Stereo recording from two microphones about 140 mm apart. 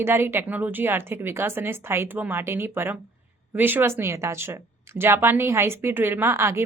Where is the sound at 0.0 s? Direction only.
15° right (ahead or behind).